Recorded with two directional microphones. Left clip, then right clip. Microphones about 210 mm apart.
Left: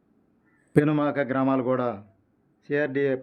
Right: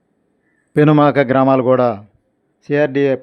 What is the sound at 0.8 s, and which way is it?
Speech, 55° right (ahead or behind).